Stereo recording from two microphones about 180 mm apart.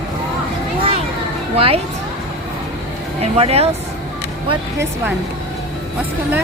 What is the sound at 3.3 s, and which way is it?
Speech, 35° right (ahead or behind).